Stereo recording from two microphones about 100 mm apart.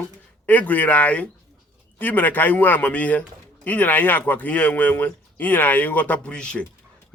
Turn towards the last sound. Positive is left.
turn(degrees=10)  # may be behind; listen again after turning